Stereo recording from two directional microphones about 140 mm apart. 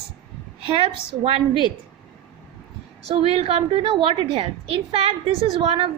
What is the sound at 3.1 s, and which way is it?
A woman's voice, 45° right (ahead or behind).